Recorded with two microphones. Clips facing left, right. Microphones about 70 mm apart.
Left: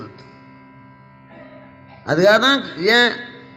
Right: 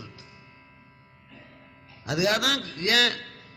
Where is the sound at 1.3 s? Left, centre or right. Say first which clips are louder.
Left 10 dB; left.